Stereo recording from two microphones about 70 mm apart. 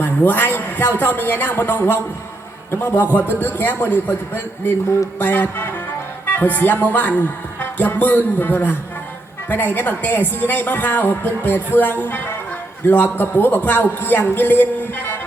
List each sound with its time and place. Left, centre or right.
0.0 s a woman's voice: left
5.2 s a woman's voice: left